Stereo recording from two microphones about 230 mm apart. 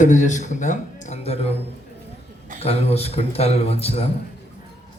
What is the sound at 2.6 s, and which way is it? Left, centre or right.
Speech, left.